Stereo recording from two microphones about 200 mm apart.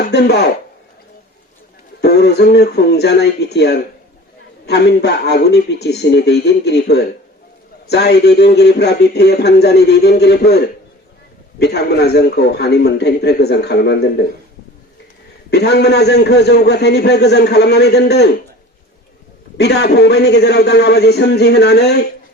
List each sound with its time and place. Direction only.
0.1 s a man's voice: 55° left (ahead or behind)
2.0 s a man's voice: 55° left (ahead or behind)
11.6 s a man's voice: 55° left (ahead or behind)
15.4 s a man's voice: 55° left (ahead or behind)
19.5 s a man's voice: 55° left (ahead or behind)